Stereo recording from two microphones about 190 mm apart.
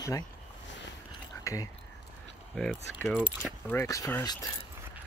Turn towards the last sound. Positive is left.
turn(degrees=15)  # may be behind; listen again after turning